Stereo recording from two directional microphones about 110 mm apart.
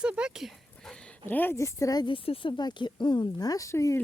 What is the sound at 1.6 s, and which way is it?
Speech, 30° left (ahead or behind).